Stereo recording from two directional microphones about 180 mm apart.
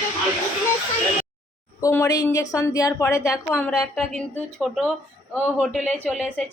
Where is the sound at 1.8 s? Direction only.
15° left (ahead or behind).